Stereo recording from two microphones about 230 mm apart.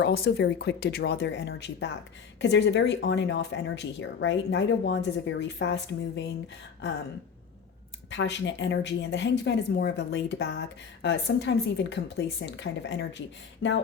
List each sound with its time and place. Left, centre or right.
0.0 s speech: left
8.1 s speech: left